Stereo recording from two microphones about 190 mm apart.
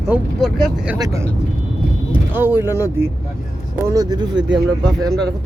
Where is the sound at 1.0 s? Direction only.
15° right (ahead or behind).